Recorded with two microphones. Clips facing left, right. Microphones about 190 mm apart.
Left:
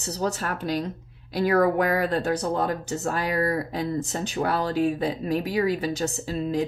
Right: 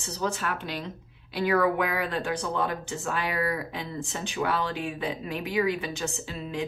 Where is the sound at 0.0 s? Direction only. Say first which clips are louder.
Left 3 dB; 40° left (ahead or behind).